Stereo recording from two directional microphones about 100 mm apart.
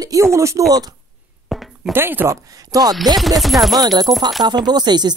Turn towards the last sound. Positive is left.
turn(degrees=-45)  # may be behind; listen again after turning